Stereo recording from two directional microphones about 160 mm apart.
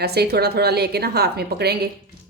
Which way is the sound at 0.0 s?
90° right.